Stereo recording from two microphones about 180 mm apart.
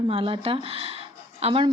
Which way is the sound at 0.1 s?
30° right (ahead or behind).